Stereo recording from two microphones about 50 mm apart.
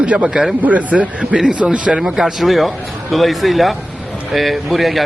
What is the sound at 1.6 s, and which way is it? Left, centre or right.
Speech, right.